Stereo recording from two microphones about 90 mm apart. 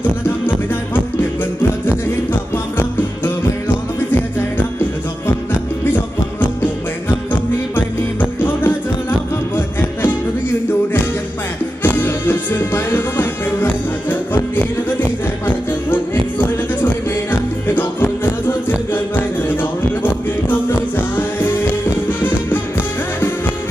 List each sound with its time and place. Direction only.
7.7 s music: 20° left (ahead or behind)
11.8 s music: 20° left (ahead or behind)